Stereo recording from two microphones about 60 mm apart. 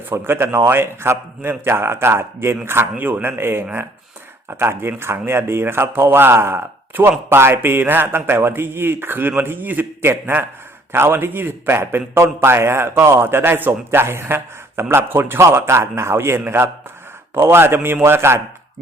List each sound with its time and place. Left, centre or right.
0.1 s a man's voice: right
3.0 s a man's voice: right